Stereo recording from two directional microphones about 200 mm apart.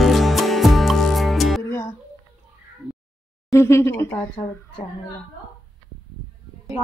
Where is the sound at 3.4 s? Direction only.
15° left (ahead or behind).